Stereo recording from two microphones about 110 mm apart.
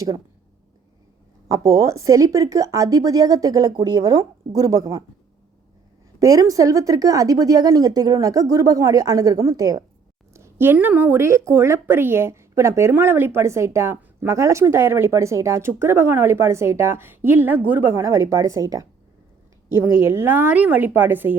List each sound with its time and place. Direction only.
1.5 s a woman's voice: 30° right (ahead or behind)
6.1 s a woman's voice: 30° right (ahead or behind)
10.3 s a woman's voice: 20° right (ahead or behind)